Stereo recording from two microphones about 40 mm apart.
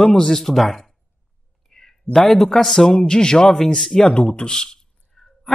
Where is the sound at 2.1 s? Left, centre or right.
Centre.